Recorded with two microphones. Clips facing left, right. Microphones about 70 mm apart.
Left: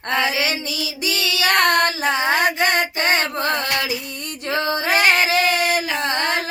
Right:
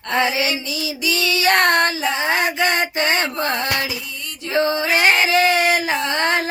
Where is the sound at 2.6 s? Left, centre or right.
Right.